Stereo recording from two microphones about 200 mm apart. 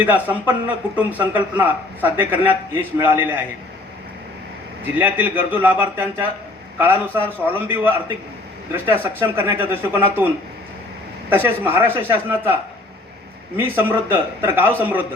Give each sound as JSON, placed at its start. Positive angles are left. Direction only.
{"t": 0.0, "sound": "a man's voice", "side_deg": -10}
{"t": 4.9, "sound": "a man's voice", "side_deg": -10}
{"t": 13.6, "sound": "a man's voice", "side_deg": -10}